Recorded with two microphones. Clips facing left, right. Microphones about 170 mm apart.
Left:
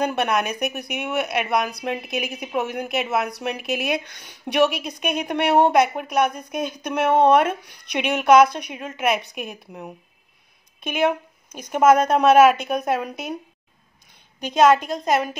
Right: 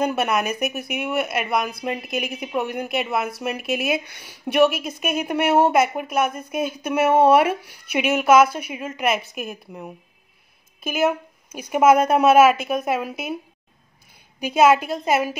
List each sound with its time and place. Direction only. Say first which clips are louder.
0.0 s a woman's voice: even; centre (ahead or behind)
14.4 s a woman's voice: even; 10° right (ahead or behind)